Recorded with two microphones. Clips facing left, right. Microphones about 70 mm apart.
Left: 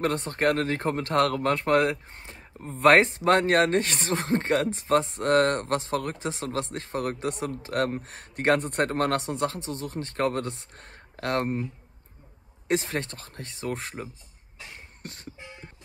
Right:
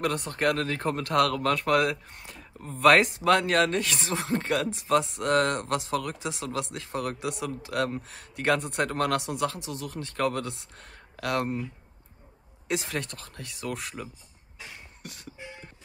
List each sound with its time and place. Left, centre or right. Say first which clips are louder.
0.0 s speech: left 2 dB; left
15.0 s beatboxing: left 2 dB; left